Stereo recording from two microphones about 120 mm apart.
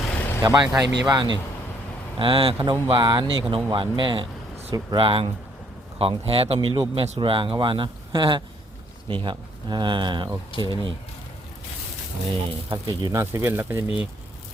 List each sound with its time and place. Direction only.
0.4 s speech: 35° right (ahead or behind)
12.6 s speech: 35° right (ahead or behind)
13.3 s speech: 20° right (ahead or behind)
13.8 s speech: 50° left (ahead or behind)